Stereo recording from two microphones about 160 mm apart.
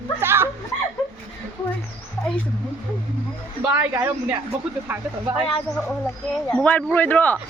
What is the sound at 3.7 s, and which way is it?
Speech, 15° right (ahead or behind).